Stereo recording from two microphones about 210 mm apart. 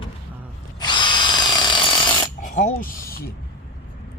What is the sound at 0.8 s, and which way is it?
Ratchet, 20° left (ahead or behind).